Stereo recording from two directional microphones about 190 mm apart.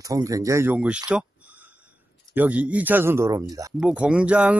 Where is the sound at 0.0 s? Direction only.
15° right (ahead or behind).